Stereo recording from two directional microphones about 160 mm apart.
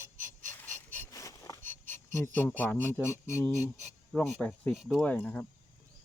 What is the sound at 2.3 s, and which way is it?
Speech, 10° left (ahead or behind).